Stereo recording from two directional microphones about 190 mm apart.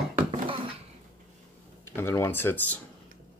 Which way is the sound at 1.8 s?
10° left (ahead or behind).